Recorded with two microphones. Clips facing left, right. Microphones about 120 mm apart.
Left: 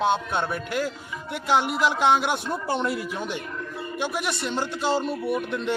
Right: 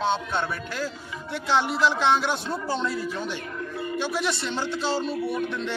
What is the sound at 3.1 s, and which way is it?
Speech, 5° left (ahead or behind).